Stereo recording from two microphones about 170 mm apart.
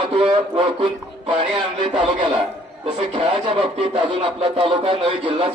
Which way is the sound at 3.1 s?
30° right (ahead or behind).